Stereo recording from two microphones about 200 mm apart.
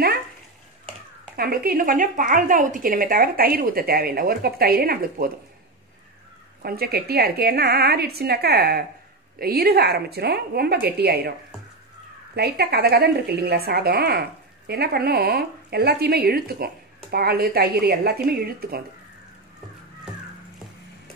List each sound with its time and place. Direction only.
1.3 s speech: 50° right (ahead or behind)
6.6 s speech: 50° right (ahead or behind)
12.4 s speech: 50° right (ahead or behind)